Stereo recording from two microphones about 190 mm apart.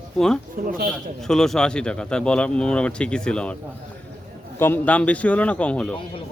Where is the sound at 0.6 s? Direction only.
45° right (ahead or behind).